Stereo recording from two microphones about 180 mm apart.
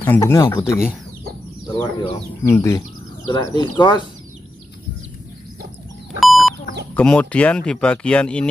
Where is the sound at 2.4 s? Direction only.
15° left (ahead or behind).